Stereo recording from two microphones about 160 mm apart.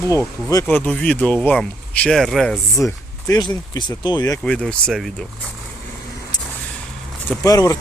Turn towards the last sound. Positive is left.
turn(degrees=20)  # may be behind; listen again after turning